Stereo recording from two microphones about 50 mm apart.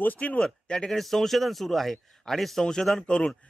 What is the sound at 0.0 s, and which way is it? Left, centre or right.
Speech, left.